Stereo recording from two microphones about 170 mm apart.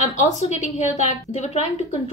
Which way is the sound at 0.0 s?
45° left (ahead or behind).